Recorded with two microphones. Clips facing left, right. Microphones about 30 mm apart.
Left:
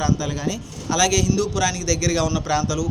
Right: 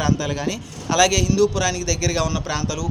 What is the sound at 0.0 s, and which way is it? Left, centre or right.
A man's voice, right.